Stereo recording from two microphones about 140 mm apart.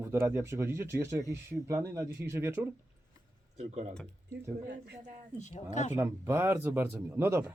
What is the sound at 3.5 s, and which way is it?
Speech, 55° right (ahead or behind).